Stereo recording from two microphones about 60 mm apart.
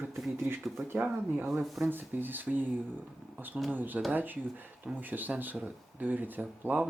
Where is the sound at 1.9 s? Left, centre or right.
Right.